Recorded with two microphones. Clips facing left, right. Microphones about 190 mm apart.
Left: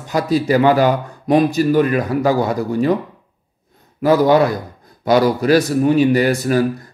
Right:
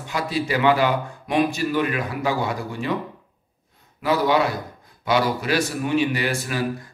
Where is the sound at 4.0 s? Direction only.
45° left (ahead or behind).